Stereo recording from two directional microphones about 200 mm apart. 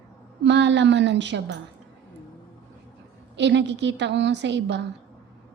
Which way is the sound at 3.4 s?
60° right (ahead or behind).